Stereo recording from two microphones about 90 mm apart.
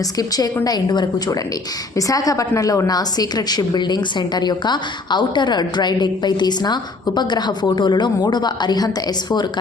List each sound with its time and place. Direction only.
0.2 s a woman's voice: 45° left (ahead or behind)